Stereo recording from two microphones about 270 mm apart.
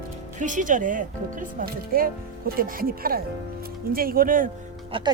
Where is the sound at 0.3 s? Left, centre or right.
Right.